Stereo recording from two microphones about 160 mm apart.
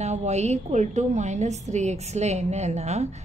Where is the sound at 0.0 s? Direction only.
45° right (ahead or behind).